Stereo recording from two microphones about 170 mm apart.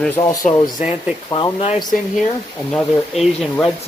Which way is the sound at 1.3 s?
30° left (ahead or behind).